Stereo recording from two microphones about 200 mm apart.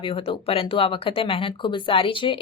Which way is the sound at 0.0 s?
30° left (ahead or behind).